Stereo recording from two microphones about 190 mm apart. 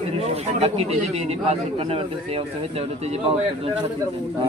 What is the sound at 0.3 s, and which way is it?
A man's voice, 30° right (ahead or behind).